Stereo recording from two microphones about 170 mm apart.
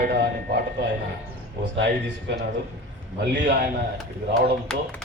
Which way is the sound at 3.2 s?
80° right.